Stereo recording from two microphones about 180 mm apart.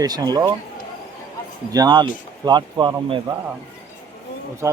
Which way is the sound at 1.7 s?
20° right (ahead or behind).